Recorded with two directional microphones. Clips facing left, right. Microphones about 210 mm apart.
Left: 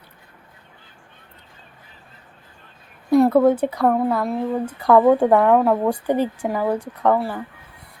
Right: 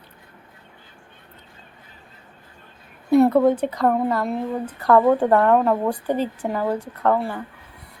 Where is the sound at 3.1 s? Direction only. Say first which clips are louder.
Left 1 dB; centre (ahead or behind).